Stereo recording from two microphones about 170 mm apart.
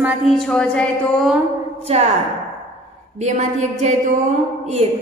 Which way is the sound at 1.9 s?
35° right (ahead or behind).